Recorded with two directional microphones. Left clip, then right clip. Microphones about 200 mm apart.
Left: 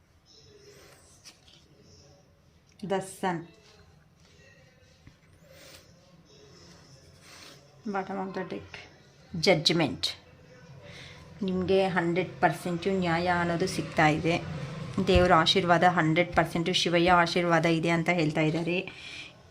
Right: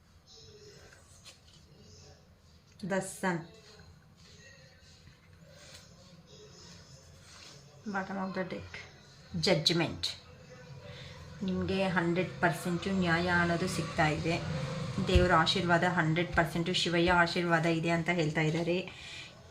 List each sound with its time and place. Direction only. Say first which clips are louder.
2.8 s a woman's voice: left 3 dB; 45° left (ahead or behind)
7.9 s a woman's voice: left 4 dB; 45° left (ahead or behind)
9.4 s a woman's voice: left 5 dB; 50° left (ahead or behind)
11.4 s a woman's voice: left 7 dB; 50° left (ahead or behind)